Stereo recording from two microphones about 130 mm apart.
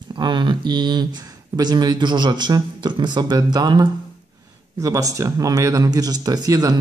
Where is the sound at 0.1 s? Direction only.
35° right (ahead or behind).